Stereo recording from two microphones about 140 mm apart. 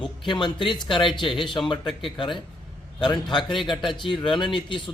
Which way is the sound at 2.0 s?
35° left (ahead or behind).